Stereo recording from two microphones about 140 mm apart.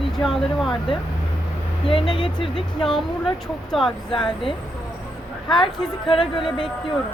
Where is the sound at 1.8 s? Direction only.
40° left (ahead or behind).